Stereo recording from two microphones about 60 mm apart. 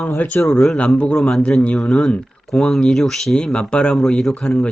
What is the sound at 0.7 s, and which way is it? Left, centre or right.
Speech, centre.